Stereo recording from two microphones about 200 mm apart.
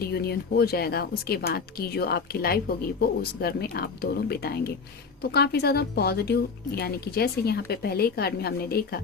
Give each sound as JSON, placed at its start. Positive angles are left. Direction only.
{"t": 0.0, "sound": "speech", "side_deg": 50}